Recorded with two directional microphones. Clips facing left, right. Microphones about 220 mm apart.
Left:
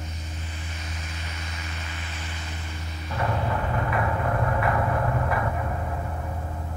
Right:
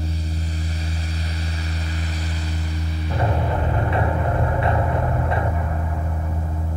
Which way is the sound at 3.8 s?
30° right (ahead or behind).